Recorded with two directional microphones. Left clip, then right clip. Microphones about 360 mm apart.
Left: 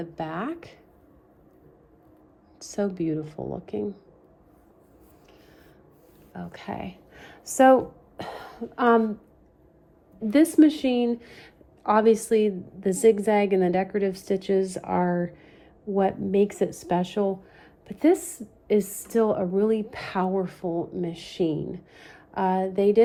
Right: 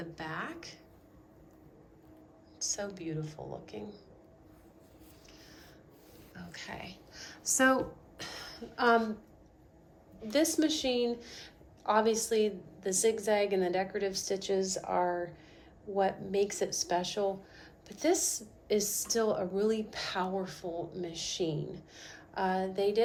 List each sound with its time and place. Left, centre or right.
0.0 s speech: centre
2.6 s speech: centre
6.3 s speech: centre
10.2 s speech: centre
17.6 s a sound: centre
18.7 s speech: centre